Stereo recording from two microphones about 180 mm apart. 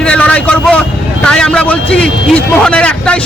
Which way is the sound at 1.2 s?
5° left (ahead or behind).